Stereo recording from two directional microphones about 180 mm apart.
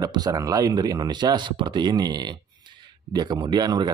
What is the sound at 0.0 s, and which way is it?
Speech, 20° right (ahead or behind).